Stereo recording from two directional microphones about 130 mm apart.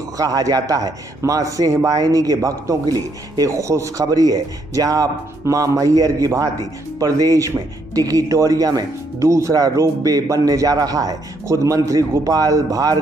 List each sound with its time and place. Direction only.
0.2 s a man's voice: 30° right (ahead or behind)